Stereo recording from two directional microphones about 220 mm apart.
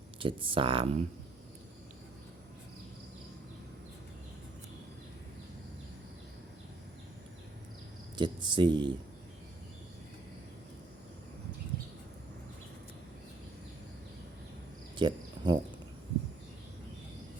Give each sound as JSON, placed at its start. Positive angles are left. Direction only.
{"t": 0.2, "sound": "speech", "side_deg": -25}
{"t": 8.1, "sound": "speech", "side_deg": -20}
{"t": 14.9, "sound": "cricket", "side_deg": -20}